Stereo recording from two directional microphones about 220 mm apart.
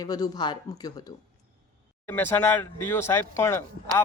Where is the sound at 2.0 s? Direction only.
10° left (ahead or behind).